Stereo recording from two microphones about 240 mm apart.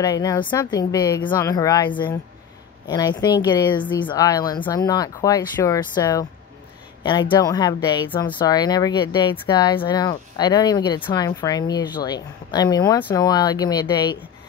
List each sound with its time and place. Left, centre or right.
0.0 s speech: centre